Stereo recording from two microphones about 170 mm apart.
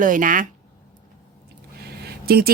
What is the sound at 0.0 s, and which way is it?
Speech, 50° right (ahead or behind).